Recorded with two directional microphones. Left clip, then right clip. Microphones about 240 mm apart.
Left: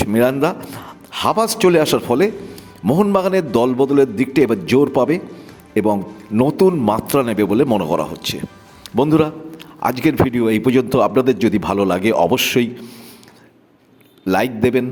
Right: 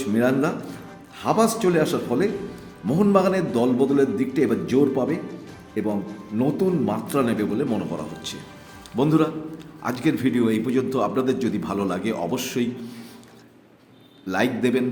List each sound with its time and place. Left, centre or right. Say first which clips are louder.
0.1 s a man's voice: left 4 dB; left
14.3 s a man's voice: left 6 dB; left